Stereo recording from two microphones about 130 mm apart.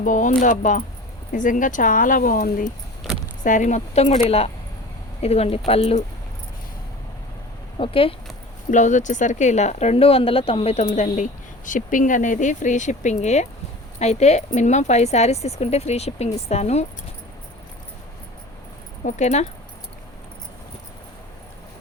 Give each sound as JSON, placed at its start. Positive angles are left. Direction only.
{"t": 0.0, "sound": "speech", "side_deg": 80}
{"t": 1.3, "sound": "speech", "side_deg": 85}
{"t": 3.4, "sound": "a woman's voice", "side_deg": 75}
{"t": 7.8, "sound": "a woman's voice", "side_deg": 45}
{"t": 8.7, "sound": "speech", "side_deg": 70}
{"t": 19.0, "sound": "speech", "side_deg": 65}